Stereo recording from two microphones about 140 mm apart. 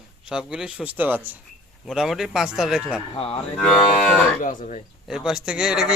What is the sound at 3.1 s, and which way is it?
Speech, 40° left (ahead or behind).